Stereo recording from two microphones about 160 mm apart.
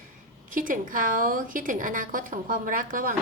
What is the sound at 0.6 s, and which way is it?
A woman's voice, 55° right (ahead or behind).